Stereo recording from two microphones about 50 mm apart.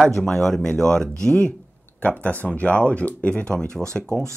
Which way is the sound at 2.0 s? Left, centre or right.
Left.